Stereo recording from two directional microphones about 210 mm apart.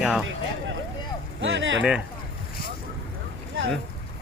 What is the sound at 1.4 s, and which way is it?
Speech, 60° right (ahead or behind).